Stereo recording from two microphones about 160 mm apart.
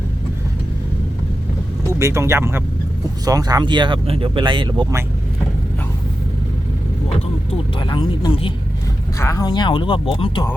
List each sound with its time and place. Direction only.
1.9 s speech: 20° right (ahead or behind)
7.8 s speech: 25° left (ahead or behind)
9.1 s speech: 20° left (ahead or behind); by 10.4 s 35° left (ahead or behind)